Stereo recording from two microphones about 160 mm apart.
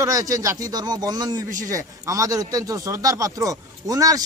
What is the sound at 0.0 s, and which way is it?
Speech, 20° right (ahead or behind).